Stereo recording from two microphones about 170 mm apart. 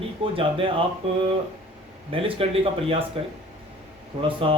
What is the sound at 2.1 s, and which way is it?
Speech, 35° right (ahead or behind).